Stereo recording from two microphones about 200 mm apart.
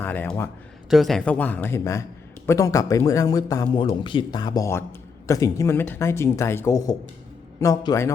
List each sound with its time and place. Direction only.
0.0 s speech: 10° left (ahead or behind)
0.9 s speech: centre (ahead or behind); by 8.1 s 15° left (ahead or behind)